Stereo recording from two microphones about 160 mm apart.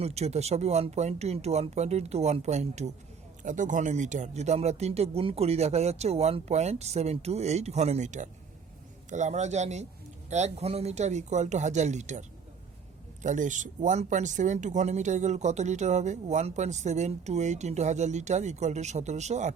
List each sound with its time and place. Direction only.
0.0 s speech: 40° right (ahead or behind)
13.2 s speech: 50° right (ahead or behind)